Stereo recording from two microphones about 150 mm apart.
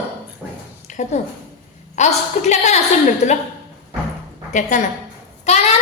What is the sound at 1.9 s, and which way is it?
Speech, 50° left (ahead or behind).